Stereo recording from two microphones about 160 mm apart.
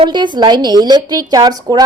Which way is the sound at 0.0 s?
30° right (ahead or behind).